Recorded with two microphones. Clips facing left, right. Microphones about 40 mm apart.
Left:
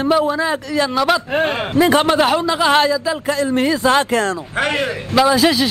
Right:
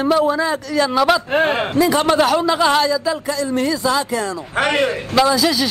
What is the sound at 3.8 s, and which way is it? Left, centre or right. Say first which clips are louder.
Speech: left 4 dB; left.